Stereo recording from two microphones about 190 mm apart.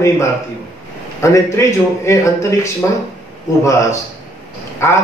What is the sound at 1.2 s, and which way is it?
A man's voice, 15° left (ahead or behind).